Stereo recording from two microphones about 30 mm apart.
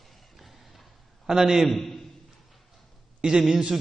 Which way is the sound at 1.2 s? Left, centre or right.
Centre.